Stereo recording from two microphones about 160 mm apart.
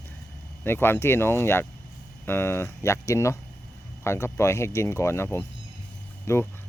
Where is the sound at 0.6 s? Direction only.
15° left (ahead or behind).